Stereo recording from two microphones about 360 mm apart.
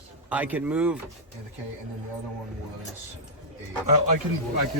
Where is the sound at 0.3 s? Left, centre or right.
Centre.